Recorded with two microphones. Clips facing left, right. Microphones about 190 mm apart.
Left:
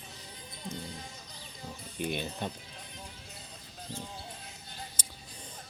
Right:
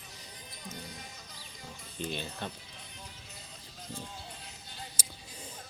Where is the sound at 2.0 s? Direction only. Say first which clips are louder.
Left 3 dB; 15° left (ahead or behind).